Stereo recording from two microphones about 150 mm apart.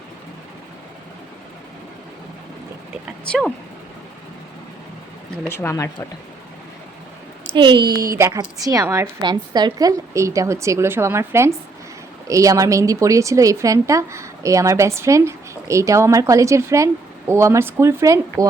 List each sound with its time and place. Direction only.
3.2 s speech: 5° left (ahead or behind)
5.5 s speech: 15° left (ahead or behind)
7.5 s a woman's voice: 35° right (ahead or behind)